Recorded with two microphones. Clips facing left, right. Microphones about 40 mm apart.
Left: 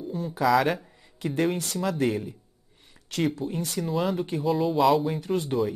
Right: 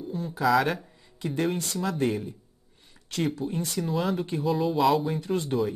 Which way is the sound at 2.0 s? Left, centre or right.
Centre.